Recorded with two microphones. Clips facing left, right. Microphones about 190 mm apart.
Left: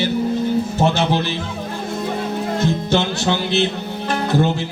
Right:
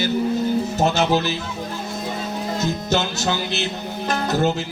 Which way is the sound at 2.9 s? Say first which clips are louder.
Left 3 dB; 40° right (ahead or behind).